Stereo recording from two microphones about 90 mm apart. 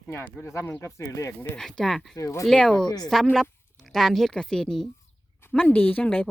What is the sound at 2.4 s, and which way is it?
Speech, 5° left (ahead or behind).